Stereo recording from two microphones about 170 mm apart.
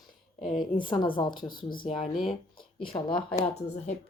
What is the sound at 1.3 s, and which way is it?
Speech, 55° left (ahead or behind).